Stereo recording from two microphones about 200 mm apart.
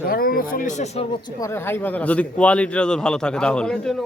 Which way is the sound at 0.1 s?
45° left (ahead or behind).